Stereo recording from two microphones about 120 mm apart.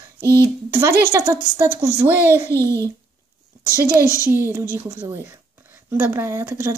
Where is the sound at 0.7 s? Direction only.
25° right (ahead or behind).